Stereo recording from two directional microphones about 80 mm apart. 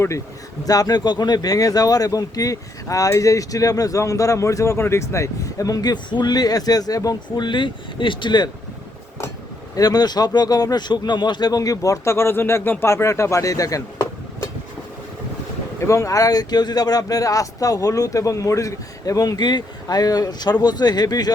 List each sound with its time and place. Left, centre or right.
0.6 s speech: left
9.7 s speech: left
15.8 s speech: left